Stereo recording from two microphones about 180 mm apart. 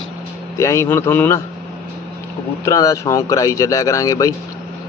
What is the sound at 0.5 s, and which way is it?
Speech, 15° left (ahead or behind).